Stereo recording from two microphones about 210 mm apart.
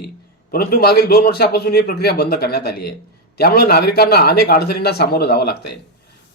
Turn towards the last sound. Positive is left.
turn(degrees=50)  # may be behind; listen again after turning